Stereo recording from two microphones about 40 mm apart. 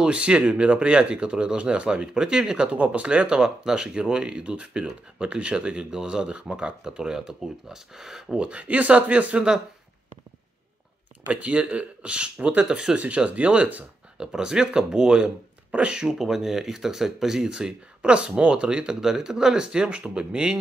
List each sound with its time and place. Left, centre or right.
0.0 s speech: right
8.4 s speech: right
11.2 s speech: right
13.0 s speech: right
14.1 s speech: right
16.2 s speech: centre
17.5 s speech: right